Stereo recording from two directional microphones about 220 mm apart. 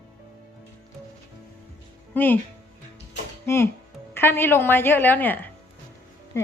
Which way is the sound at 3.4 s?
10° left (ahead or behind).